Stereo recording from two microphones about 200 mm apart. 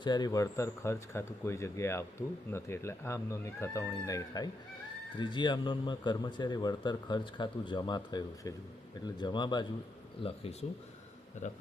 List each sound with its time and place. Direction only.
0.0 s speech: 20° left (ahead or behind); by 11.6 s 35° left (ahead or behind)